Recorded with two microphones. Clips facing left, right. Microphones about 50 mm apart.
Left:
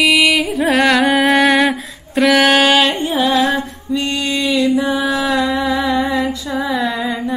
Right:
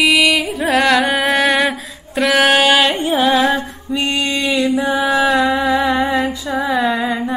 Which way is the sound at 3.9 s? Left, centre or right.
Right.